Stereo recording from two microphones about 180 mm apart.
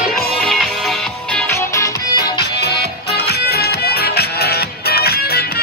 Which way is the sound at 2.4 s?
65° left (ahead or behind).